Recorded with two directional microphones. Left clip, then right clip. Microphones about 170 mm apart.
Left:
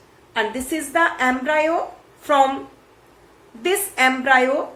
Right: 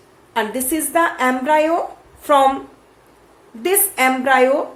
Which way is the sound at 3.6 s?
35° right (ahead or behind).